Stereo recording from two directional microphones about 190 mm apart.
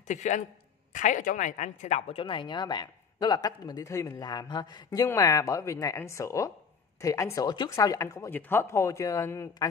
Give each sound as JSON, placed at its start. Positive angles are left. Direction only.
{"t": 0.1, "sound": "a man's voice", "side_deg": 40}